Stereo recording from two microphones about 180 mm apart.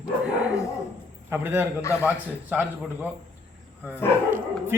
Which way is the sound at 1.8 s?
15° left (ahead or behind).